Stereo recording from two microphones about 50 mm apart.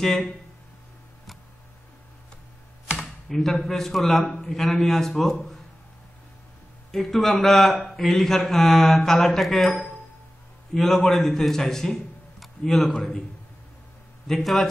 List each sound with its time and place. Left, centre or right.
0.0 s speech: centre
3.0 s a man's voice: centre
6.9 s a man's voice: centre
9.7 s speech: centre
10.7 s a man's voice: centre
14.2 s a man's voice: centre